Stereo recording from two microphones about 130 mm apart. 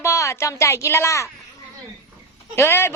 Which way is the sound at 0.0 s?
20° left (ahead or behind).